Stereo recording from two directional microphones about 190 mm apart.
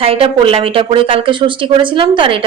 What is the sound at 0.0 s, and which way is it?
Speech, 30° right (ahead or behind).